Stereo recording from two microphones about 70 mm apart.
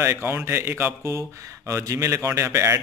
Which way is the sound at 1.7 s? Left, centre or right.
Right.